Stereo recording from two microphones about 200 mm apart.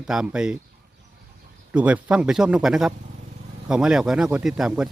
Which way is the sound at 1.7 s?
5° right (ahead or behind).